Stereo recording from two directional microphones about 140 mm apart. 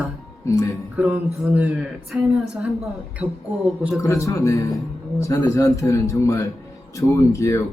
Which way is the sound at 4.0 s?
25° left (ahead or behind).